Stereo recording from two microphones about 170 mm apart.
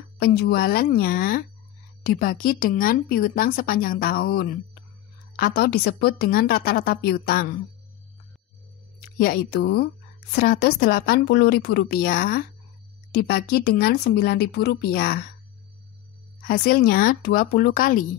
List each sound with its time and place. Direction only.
0.2 s a woman's voice: 65° left (ahead or behind)
9.2 s a woman's voice: 65° left (ahead or behind)
16.4 s a woman's voice: 60° left (ahead or behind)